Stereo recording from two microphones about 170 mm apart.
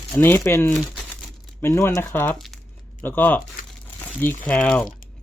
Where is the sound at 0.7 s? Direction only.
Centre (ahead or behind).